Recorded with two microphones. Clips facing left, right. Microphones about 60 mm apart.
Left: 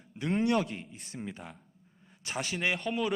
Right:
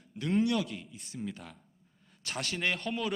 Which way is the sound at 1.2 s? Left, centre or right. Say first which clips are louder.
Right 1 dB; left.